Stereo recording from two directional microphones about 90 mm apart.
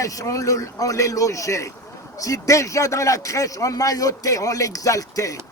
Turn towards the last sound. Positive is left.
turn(degrees=40)  # may be behind; listen again after turning